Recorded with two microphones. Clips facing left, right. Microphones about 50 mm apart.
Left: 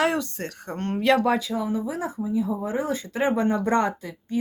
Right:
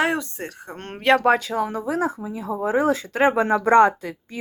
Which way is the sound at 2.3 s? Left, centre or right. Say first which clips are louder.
Left 3 dB; right.